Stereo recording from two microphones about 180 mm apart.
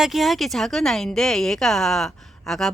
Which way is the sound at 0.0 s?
Centre (ahead or behind).